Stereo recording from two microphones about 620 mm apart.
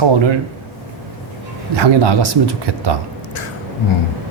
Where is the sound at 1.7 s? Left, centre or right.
Right.